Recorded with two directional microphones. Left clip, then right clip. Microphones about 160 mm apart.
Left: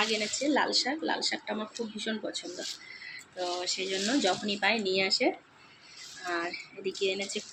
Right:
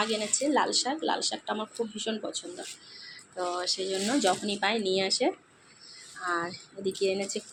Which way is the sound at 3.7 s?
10° right (ahead or behind).